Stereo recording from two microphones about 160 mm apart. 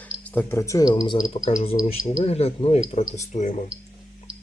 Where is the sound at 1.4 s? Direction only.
40° left (ahead or behind).